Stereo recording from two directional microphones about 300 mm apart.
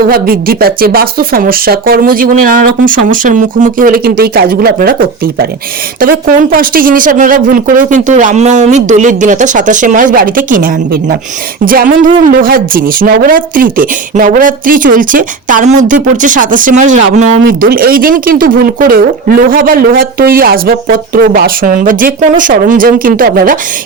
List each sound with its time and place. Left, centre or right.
0.0 s speech: right